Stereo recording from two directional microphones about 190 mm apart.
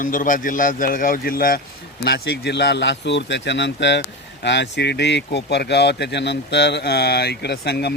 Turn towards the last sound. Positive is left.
turn(degrees=60)  # may be behind; listen again after turning